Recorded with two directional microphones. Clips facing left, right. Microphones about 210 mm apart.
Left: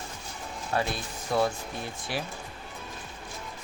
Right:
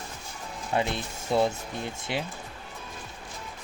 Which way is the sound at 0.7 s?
20° right (ahead or behind).